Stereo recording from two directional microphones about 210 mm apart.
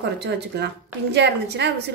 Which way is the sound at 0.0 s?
55° right (ahead or behind).